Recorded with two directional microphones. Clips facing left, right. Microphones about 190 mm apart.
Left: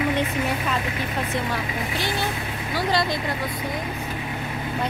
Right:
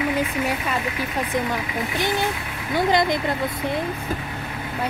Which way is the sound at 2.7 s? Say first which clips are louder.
Right 4 dB; 20° right (ahead or behind).